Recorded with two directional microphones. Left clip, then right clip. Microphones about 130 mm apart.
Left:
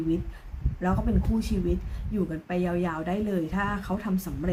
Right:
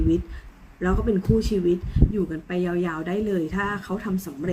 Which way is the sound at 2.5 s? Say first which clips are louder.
Right 1 dB; 25° left (ahead or behind).